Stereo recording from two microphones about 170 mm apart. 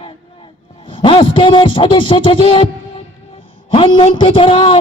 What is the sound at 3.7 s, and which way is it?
Speech, 30° left (ahead or behind).